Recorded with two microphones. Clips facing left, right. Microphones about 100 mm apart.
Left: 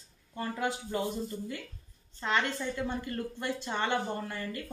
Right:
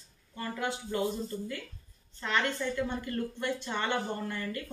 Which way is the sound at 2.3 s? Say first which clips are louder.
Even; 20° left (ahead or behind).